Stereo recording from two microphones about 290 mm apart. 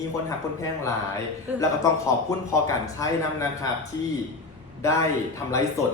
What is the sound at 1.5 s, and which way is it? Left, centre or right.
Speech, centre.